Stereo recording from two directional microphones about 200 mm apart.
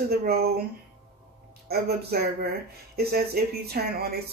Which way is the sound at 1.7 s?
50° right (ahead or behind).